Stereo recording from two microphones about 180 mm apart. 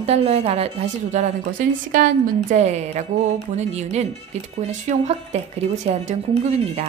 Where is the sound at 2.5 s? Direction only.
40° right (ahead or behind).